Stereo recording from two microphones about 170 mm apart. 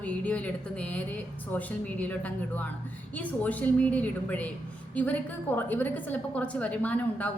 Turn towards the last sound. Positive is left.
turn(degrees=10)  # may be behind; listen again after turning